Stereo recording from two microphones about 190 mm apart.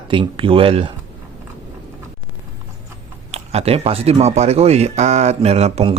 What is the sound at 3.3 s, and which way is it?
Speech, 35° right (ahead or behind).